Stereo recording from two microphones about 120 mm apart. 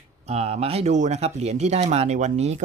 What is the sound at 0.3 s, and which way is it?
Speech, 60° right (ahead or behind).